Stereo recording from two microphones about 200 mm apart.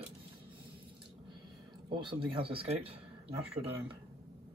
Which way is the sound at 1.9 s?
25° right (ahead or behind).